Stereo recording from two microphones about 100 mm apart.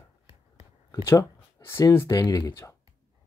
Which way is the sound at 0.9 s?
30° left (ahead or behind).